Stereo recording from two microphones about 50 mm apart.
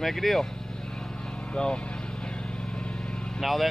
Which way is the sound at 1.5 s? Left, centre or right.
Centre.